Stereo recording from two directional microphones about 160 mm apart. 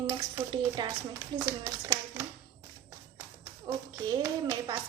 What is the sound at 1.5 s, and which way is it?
Speech, 15° right (ahead or behind).